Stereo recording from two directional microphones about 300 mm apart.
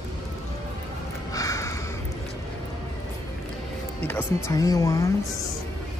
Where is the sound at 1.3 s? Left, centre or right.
Centre.